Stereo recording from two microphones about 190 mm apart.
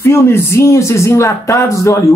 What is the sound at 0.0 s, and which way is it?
Speech, 15° left (ahead or behind).